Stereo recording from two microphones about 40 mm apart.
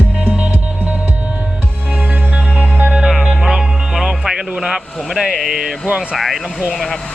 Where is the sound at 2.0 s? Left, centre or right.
Right.